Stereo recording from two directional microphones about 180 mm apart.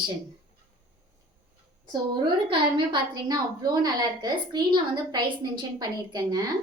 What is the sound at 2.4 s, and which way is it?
A woman's voice, 25° right (ahead or behind).